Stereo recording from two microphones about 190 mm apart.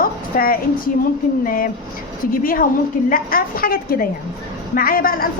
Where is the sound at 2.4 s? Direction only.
50° left (ahead or behind).